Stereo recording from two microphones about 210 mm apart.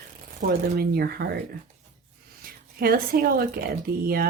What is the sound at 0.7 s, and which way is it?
Speech, 45° right (ahead or behind).